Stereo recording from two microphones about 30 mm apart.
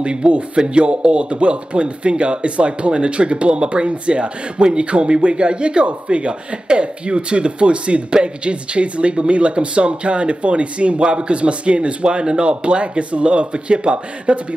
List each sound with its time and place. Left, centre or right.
0.0 s speech: right